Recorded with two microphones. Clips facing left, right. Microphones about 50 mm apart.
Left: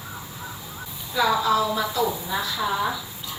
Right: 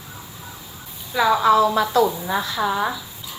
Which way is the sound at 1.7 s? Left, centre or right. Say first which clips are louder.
Right 6 dB; right.